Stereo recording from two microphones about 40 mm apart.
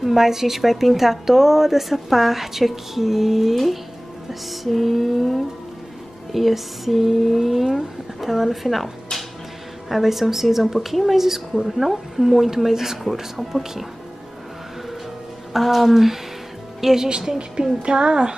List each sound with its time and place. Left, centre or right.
0.0 s a woman's voice: centre
15.5 s a woman's voice: centre; by 18.3 s right